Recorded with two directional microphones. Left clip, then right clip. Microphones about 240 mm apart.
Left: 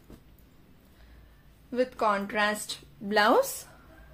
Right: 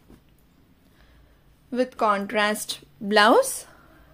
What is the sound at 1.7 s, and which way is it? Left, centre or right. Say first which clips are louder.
A woman's voice: right 4 dB; right.